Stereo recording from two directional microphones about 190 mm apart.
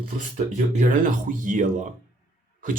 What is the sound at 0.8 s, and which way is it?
Speech, 45° right (ahead or behind).